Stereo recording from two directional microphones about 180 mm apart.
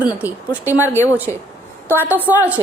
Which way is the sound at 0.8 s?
15° left (ahead or behind).